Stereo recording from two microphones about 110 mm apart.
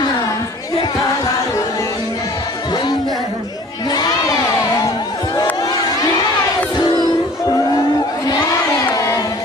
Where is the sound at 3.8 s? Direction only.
35° left (ahead or behind).